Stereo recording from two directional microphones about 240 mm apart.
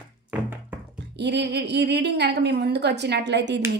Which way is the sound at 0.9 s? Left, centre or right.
Right.